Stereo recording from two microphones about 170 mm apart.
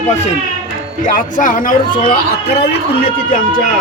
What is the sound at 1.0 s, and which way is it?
Speech, 50° left (ahead or behind).